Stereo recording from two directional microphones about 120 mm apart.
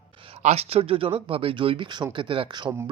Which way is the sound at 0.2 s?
50° right (ahead or behind).